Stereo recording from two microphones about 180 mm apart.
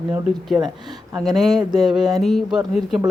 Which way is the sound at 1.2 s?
Centre (ahead or behind).